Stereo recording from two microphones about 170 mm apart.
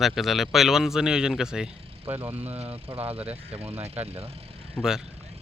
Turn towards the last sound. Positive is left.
turn(degrees=0)  # may be behind; listen again after turning